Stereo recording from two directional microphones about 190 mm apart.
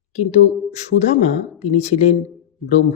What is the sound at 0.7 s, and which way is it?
Speech, 35° left (ahead or behind).